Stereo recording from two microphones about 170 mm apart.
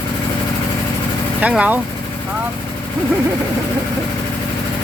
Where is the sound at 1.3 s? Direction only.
10° right (ahead or behind).